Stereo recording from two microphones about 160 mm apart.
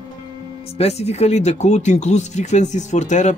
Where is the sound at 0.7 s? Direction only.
40° left (ahead or behind).